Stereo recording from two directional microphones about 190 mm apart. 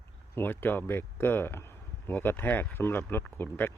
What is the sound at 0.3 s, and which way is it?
Speech, 10° left (ahead or behind).